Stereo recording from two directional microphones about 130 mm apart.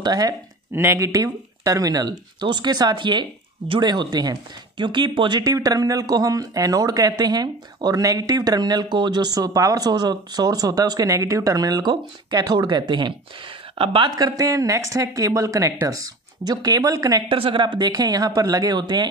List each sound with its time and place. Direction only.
0.0 s speech: 30° right (ahead or behind)
0.7 s speech: 20° right (ahead or behind)
17.3 s speech: 40° right (ahead or behind)